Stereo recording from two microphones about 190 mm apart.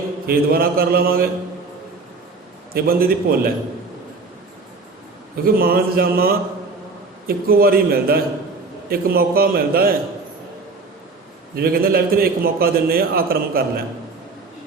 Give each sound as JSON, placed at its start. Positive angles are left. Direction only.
{"t": 0.3, "sound": "a man's voice", "side_deg": -50}
{"t": 2.7, "sound": "a man's voice", "side_deg": -50}
{"t": 5.5, "sound": "a man's voice", "side_deg": -50}
{"t": 11.5, "sound": "a man's voice", "side_deg": -50}